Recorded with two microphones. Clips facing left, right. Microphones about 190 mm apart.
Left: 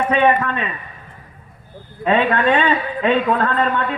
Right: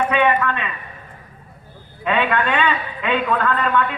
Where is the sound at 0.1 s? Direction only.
35° left (ahead or behind).